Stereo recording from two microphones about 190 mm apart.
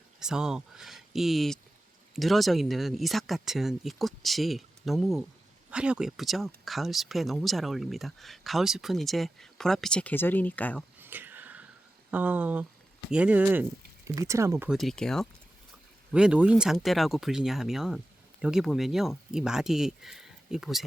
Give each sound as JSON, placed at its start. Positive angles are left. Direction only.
{"t": 0.2, "sound": "speech", "side_deg": -5}
{"t": 11.0, "sound": "a sound", "side_deg": -10}
{"t": 12.1, "sound": "speech", "side_deg": -10}
{"t": 14.7, "sound": "speech", "side_deg": 0}